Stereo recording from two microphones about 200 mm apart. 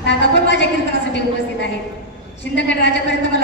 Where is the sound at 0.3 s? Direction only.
60° left (ahead or behind).